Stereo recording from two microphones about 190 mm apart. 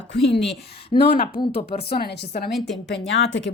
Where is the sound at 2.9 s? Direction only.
70° left (ahead or behind).